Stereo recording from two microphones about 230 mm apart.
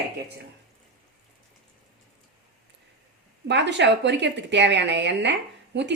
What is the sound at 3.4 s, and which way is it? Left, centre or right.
Speech, right.